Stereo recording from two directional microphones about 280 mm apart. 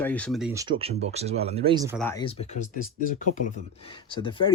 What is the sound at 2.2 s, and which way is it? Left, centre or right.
Speech, left.